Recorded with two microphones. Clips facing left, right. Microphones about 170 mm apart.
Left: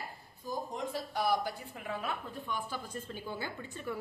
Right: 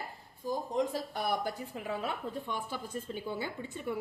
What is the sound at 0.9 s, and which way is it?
Speech, 50° right (ahead or behind).